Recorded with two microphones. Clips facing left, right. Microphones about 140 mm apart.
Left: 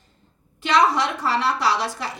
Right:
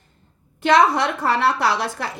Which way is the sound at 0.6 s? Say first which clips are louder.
Right 3 dB; 55° right (ahead or behind).